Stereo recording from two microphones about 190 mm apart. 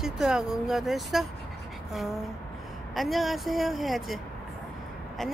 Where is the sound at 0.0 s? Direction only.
5° right (ahead or behind).